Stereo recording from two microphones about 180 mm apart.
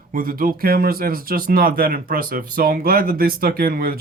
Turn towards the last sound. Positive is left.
turn(degrees=-55)  # may be behind; listen again after turning